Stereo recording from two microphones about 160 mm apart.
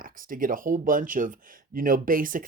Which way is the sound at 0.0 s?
60° right (ahead or behind).